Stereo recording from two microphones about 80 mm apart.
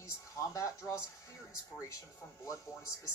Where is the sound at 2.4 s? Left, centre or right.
Left.